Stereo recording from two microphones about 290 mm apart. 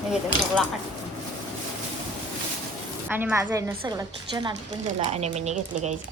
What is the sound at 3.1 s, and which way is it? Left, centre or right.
A woman's voice, centre.